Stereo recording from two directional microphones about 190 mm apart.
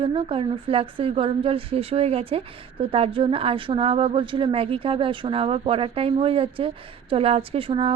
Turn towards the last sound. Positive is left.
turn(degrees=-30)  # may be behind; listen again after turning